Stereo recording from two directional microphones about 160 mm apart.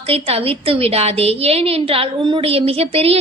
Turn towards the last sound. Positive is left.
turn(degrees=-40)  # may be behind; listen again after turning